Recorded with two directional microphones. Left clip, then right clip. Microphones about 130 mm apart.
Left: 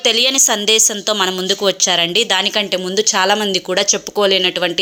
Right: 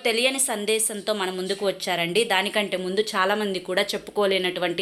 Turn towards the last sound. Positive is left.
turn(degrees=30)  # may be behind; listen again after turning